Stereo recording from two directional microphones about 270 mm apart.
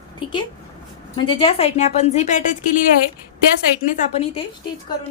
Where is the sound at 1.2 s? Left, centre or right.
Centre.